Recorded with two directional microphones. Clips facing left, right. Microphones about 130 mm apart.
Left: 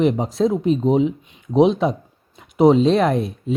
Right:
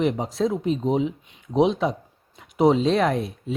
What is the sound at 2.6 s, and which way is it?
Speech, 30° left (ahead or behind).